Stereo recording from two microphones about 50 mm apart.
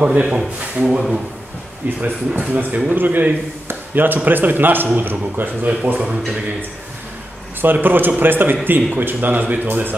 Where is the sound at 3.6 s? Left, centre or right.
Right.